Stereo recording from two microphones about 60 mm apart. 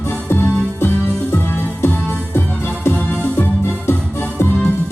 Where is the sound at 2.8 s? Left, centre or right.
Left.